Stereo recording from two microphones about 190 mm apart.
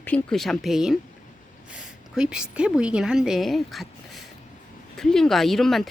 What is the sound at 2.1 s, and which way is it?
Speech, 5° right (ahead or behind).